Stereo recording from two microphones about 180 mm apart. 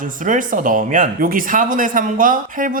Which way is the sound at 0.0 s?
45° right (ahead or behind).